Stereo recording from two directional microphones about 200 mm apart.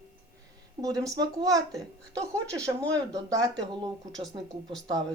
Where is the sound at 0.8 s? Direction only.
15° right (ahead or behind).